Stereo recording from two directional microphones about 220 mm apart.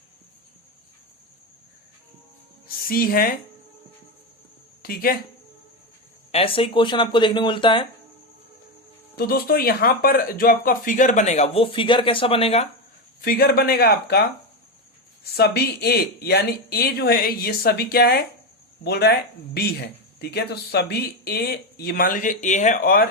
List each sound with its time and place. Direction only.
2.6 s speech: 40° left (ahead or behind)
4.8 s speech: 40° left (ahead or behind)
6.3 s speech: 25° left (ahead or behind)
9.1 s speech: 45° left (ahead or behind); by 12.6 s 25° left (ahead or behind)
13.2 s speech: 45° left (ahead or behind)